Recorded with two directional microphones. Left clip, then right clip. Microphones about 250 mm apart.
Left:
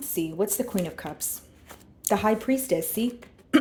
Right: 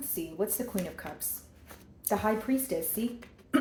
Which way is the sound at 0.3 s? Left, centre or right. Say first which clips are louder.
Left 4 dB; left.